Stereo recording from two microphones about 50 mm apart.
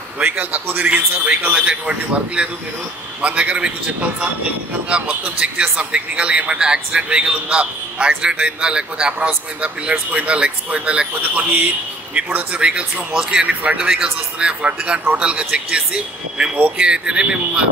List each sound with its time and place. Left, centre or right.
0.2 s a man's voice: right
4.8 s a man's voice: right
11.1 s a man's voice: right
16.5 s a man's voice: right
16.8 s a man's voice: centre